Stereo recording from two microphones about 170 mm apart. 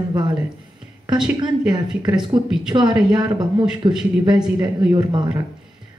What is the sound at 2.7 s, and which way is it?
Speech, 25° right (ahead or behind).